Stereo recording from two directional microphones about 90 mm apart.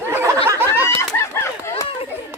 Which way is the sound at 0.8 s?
30° left (ahead or behind).